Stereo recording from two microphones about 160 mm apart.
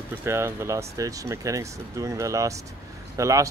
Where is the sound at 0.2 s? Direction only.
15° right (ahead or behind).